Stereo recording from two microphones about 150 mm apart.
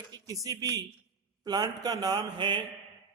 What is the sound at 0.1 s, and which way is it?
A man's voice, 25° right (ahead or behind).